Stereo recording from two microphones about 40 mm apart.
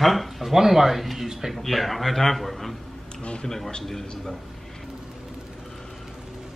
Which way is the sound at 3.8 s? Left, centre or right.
Centre.